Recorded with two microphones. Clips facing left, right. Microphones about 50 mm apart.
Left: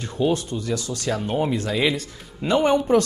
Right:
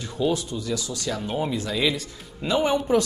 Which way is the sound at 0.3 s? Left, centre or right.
Left.